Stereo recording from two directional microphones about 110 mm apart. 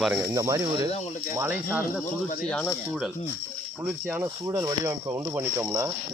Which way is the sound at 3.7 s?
15° right (ahead or behind).